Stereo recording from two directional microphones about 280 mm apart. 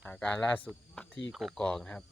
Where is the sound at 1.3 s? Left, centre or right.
Centre.